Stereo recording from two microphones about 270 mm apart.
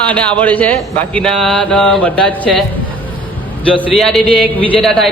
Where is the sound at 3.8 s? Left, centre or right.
Centre.